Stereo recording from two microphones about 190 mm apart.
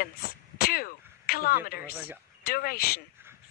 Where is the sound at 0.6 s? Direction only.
50° left (ahead or behind).